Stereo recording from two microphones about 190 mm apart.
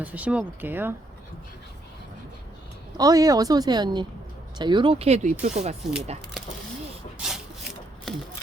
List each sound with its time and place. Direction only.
0.0 s speech: 10° right (ahead or behind)
3.0 s a woman's voice: 20° right (ahead or behind); by 5.7 s 35° right (ahead or behind)
7.2 s rub: centre (ahead or behind)